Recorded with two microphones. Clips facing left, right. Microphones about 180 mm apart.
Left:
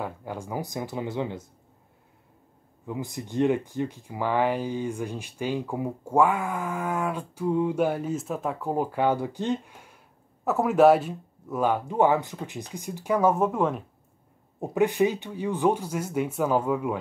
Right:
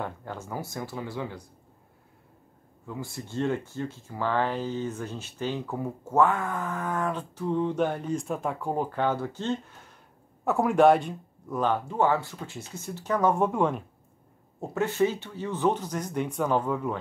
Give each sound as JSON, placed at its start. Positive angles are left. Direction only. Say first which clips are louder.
{"t": 0.0, "sound": "speech", "louder": "left 2 dB", "side_deg": 10}
{"t": 2.9, "sound": "speech", "louder": "left 4 dB", "side_deg": 15}
{"t": 10.4, "sound": "speech", "louder": "left 1 dB", "side_deg": 0}
{"t": 14.6, "sound": "speech", "louder": "left 3 dB", "side_deg": 15}